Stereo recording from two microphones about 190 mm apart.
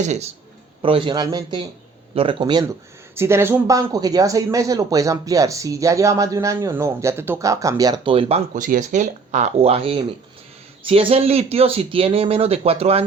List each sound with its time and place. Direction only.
0.0 s speech: 35° right (ahead or behind)
8.5 s speech: 45° right (ahead or behind)